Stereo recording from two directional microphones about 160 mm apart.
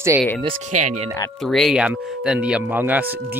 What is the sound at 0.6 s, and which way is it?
Speech, 50° right (ahead or behind).